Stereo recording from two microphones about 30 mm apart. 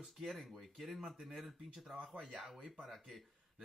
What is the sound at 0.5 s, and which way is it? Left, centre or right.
Speech, centre.